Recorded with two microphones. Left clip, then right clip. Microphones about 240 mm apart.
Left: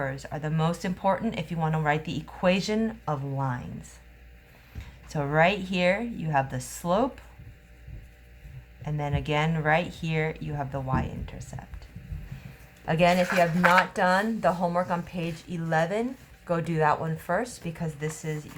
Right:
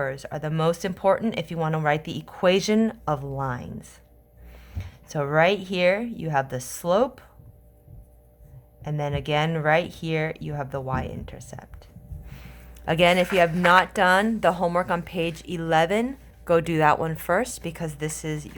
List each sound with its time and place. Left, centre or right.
0.0 s speech: right
4.8 s speech: right
8.8 s speech: right
12.8 s a man's voice: right